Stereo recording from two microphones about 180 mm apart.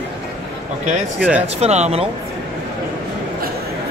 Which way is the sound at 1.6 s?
35° right (ahead or behind).